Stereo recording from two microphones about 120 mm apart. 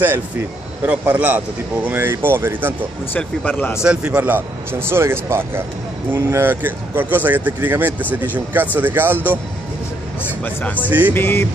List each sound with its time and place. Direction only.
0.8 s speech: 15° right (ahead or behind)
3.1 s speech: 15° left (ahead or behind)
3.8 s speech: 10° right (ahead or behind)
10.4 s speech: 15° left (ahead or behind)
10.9 s speech: 15° right (ahead or behind)
11.1 s speech: 15° left (ahead or behind)